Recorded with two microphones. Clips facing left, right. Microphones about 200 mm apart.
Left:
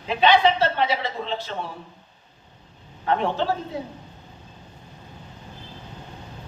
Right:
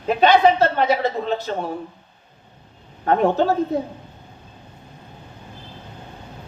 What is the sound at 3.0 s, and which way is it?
Speech, 45° right (ahead or behind).